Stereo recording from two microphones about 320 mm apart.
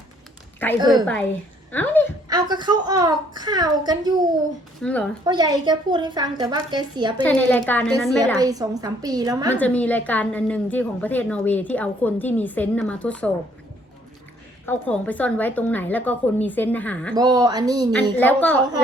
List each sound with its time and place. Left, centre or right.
0.6 s a woman's voice: centre
2.3 s a woman's voice: centre
4.8 s a woman's voice: centre
5.2 s a woman's voice: centre
7.2 s a woman's voice: centre
8.4 s a woman's voice: centre
9.5 s a woman's voice: centre
14.7 s a woman's voice: centre
17.2 s a woman's voice: centre
18.2 s a woman's voice: centre